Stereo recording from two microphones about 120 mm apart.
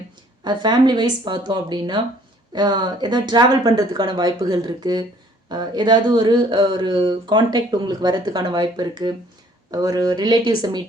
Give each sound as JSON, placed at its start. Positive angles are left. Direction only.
{"t": 0.4, "sound": "speech", "side_deg": -40}